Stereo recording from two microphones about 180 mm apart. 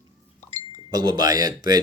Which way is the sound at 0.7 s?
20° right (ahead or behind).